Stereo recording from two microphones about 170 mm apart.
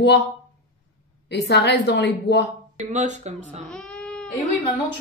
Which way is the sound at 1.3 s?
75° left (ahead or behind).